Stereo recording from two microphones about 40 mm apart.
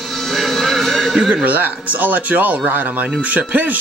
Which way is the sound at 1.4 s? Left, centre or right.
Right.